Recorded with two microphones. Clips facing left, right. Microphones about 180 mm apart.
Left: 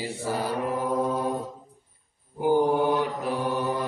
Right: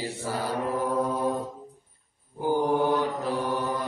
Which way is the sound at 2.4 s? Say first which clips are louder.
Left 2 dB; 15° left (ahead or behind).